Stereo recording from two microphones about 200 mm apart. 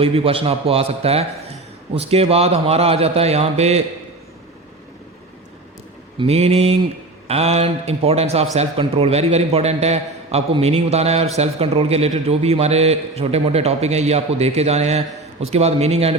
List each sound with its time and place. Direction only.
0.0 s a man's voice: 30° right (ahead or behind)
6.1 s a man's voice: 30° right (ahead or behind)